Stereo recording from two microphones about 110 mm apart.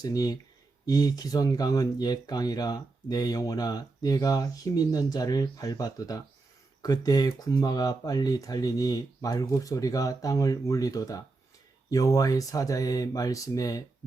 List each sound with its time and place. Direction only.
0.0 s speech: 35° left (ahead or behind)